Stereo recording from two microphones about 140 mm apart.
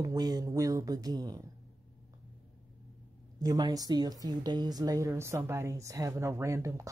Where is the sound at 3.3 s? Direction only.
30° right (ahead or behind).